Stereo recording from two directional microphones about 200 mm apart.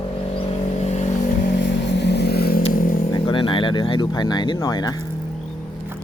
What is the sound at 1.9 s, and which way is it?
Vehicle, 55° left (ahead or behind).